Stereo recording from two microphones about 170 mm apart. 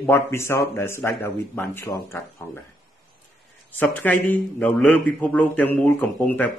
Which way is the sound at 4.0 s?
10° left (ahead or behind).